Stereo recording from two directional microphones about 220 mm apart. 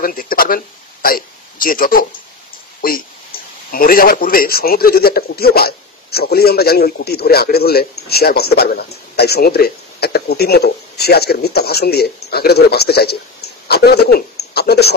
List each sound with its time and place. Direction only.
0.0 s speech: 40° left (ahead or behind)
1.0 s hiccup: 40° left (ahead or behind)
3.7 s a man's voice: 40° left (ahead or behind)